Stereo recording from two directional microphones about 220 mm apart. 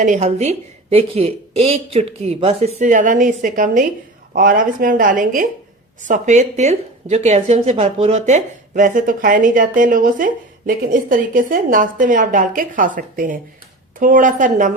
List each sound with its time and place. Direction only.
0.0 s a woman's voice: 35° right (ahead or behind)